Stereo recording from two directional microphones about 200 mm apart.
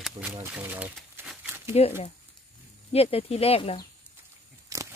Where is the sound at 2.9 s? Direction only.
30° left (ahead or behind).